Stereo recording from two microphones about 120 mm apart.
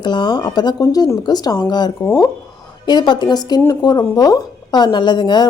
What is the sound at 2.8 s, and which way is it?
A woman's voice, 40° left (ahead or behind).